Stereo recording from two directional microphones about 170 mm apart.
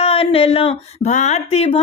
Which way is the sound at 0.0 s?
35° left (ahead or behind).